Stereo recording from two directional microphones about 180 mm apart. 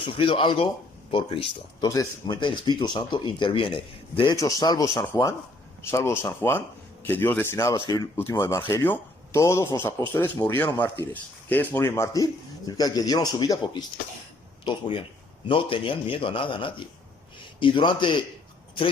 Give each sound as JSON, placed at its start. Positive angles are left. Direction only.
{"t": 0.2, "sound": "speech", "side_deg": 30}